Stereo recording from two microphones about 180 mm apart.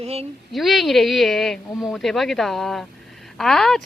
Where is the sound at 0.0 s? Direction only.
35° right (ahead or behind).